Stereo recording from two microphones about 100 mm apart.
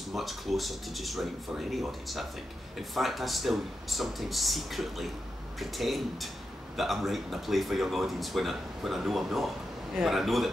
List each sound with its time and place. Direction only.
0.1 s speech: centre (ahead or behind)